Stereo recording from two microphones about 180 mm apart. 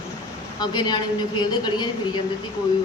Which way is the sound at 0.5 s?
25° left (ahead or behind).